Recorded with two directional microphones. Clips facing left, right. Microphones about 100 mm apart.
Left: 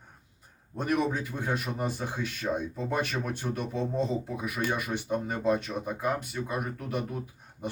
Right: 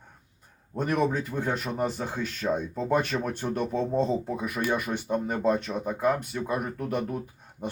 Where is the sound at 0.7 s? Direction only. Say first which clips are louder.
Right 2 dB; 50° right (ahead or behind).